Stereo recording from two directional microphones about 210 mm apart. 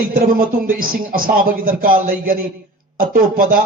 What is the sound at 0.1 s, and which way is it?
A man's voice, 40° right (ahead or behind).